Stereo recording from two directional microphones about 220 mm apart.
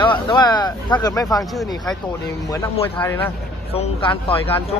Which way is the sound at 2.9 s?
10° left (ahead or behind).